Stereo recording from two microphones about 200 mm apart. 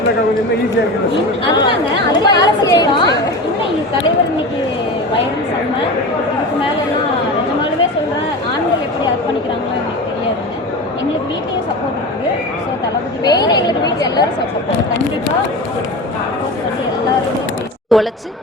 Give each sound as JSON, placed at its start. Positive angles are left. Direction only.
{"t": 2.2, "sound": "a woman's voice", "side_deg": 20}
{"t": 13.2, "sound": "a woman's voice", "side_deg": 20}
{"t": 17.9, "sound": "speech", "side_deg": 0}